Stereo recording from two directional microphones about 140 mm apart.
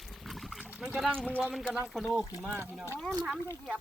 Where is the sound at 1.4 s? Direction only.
10° right (ahead or behind).